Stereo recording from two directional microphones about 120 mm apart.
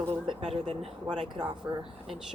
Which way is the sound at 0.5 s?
55° right (ahead or behind).